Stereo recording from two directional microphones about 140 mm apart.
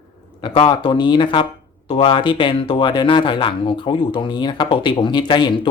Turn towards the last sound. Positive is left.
turn(degrees=35)  # may be behind; listen again after turning